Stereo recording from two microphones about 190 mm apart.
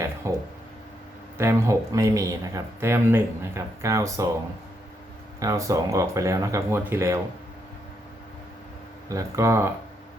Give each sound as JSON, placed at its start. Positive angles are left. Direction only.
{"t": 0.2, "sound": "speech", "side_deg": -15}
{"t": 5.4, "sound": "speech", "side_deg": -15}
{"t": 9.0, "sound": "speech", "side_deg": -15}